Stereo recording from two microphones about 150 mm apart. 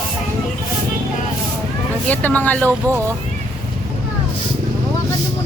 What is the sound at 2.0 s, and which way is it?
Speech, 10° left (ahead or behind).